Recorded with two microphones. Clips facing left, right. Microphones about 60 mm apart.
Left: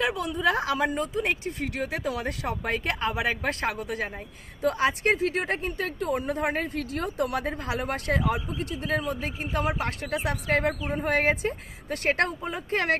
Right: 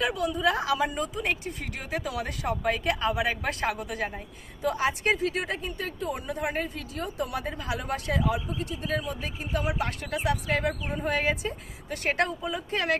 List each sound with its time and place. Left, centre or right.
0.0 s speech: left
4.6 s a woman's voice: left